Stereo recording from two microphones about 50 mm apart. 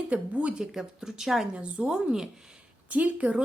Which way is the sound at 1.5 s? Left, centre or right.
Centre.